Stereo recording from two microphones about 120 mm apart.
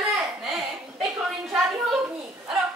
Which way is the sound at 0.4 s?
Centre (ahead or behind).